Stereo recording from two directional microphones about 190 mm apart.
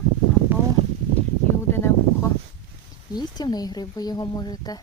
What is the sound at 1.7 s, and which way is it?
Speech, 10° left (ahead or behind).